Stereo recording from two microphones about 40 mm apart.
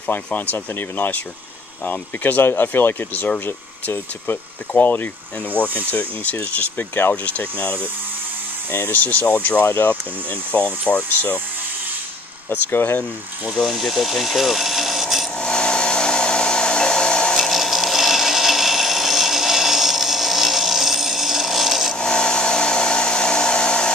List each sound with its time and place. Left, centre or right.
0.7 s speech: left
2.4 s speech: left
4.7 s speech: left
5.9 s speech: left
6.8 s speech: left
7.2 s speech: left
8.9 s speech: left
10.5 s speech: left
12.4 s speech: left
13.7 s speech: centre
15.3 s a sound: left
17.4 s wood: centre
21.9 s a sound: centre